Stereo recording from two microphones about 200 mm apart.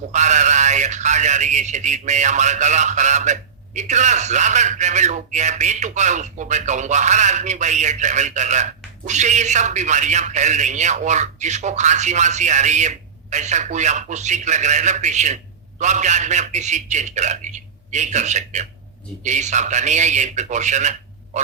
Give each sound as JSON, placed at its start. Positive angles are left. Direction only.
{"t": 0.1, "sound": "a man's voice", "side_deg": -35}